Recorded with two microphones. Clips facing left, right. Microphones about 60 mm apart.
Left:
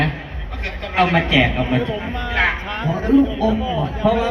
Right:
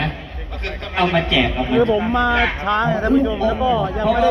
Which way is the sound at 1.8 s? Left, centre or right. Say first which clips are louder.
Right 8 dB; right.